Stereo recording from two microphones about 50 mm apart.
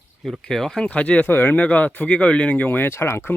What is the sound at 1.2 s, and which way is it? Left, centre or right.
Speech, left.